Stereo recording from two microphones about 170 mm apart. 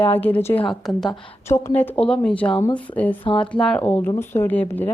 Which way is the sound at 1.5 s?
15° left (ahead or behind).